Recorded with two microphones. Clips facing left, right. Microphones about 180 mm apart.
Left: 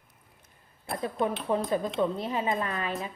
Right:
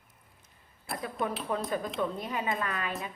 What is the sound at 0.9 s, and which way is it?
A woman's voice, 30° left (ahead or behind).